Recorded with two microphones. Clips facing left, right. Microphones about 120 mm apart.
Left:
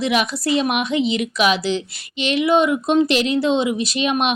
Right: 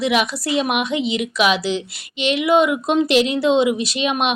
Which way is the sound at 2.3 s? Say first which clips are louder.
Even; 5° right (ahead or behind).